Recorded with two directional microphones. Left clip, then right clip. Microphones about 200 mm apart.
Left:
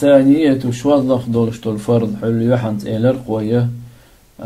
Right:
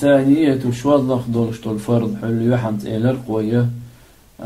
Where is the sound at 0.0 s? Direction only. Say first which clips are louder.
Left 3 dB; 40° left (ahead or behind).